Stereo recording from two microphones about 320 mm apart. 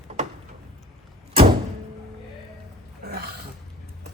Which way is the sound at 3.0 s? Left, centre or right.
Right.